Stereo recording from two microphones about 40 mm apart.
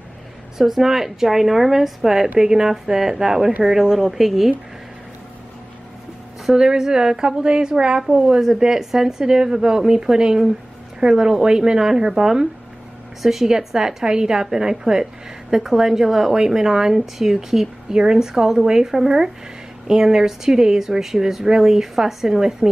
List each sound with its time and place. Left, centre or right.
0.6 s a woman's voice: centre
6.5 s a woman's voice: centre